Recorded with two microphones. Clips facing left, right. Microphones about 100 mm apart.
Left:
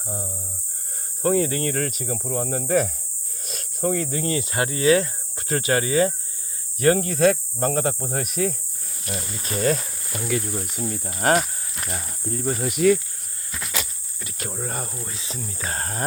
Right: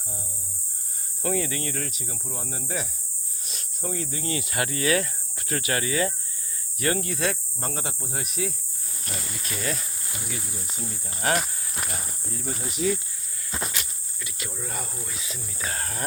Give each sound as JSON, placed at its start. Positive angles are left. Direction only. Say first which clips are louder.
{"t": 1.2, "sound": "speech", "louder": "left 7 dB", "side_deg": 40}
{"t": 3.4, "sound": "speech", "louder": "left 10 dB", "side_deg": 45}
{"t": 7.6, "sound": "insect", "louder": "left 11 dB", "side_deg": 60}
{"t": 8.0, "sound": "speech", "louder": "left 7 dB", "side_deg": 55}
{"t": 9.4, "sound": "speech", "louder": "left 10 dB", "side_deg": 40}
{"t": 10.2, "sound": "insect", "louder": "left 12 dB", "side_deg": 75}
{"t": 11.9, "sound": "speech", "louder": "left 6 dB", "side_deg": 45}
{"t": 12.6, "sound": "insect", "louder": "left 8 dB", "side_deg": 60}
{"t": 13.5, "sound": "a sound", "louder": "right 3 dB", "side_deg": -30}
{"t": 14.2, "sound": "cricket", "louder": "left 5 dB", "side_deg": 40}
{"t": 15.0, "sound": "speech", "louder": "left 4 dB", "side_deg": 30}